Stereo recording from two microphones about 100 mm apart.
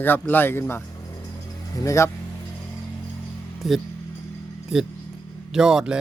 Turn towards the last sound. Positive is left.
turn(degrees=-5)  # may be behind; listen again after turning